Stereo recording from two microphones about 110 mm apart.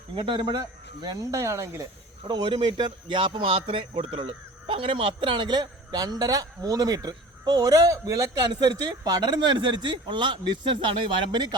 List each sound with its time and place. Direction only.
0.2 s speech: 45° right (ahead or behind); by 1.9 s 30° right (ahead or behind)
2.2 s speech: 45° right (ahead or behind)